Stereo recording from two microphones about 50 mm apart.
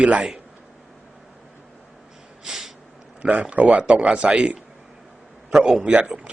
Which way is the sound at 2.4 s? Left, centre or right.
Centre.